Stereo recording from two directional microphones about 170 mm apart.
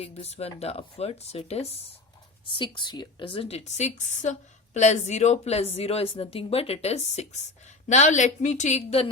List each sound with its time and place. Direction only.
0.0 s a woman's voice: 40° left (ahead or behind)